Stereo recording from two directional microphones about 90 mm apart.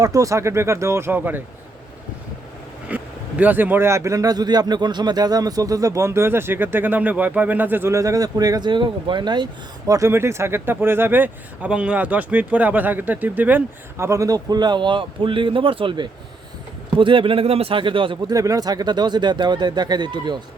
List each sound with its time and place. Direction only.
0.0 s a man's voice: 40° right (ahead or behind); by 1.4 s 20° right (ahead or behind)
2.9 s a man's voice: 15° right (ahead or behind); by 9.5 s 55° right (ahead or behind)
9.8 s speech: 35° right (ahead or behind); by 13.6 s 20° right (ahead or behind)
14.0 s a man's voice: 35° right (ahead or behind); by 18.2 s 70° right (ahead or behind)
18.3 s speech: 40° right (ahead or behind); by 20.4 s 55° right (ahead or behind)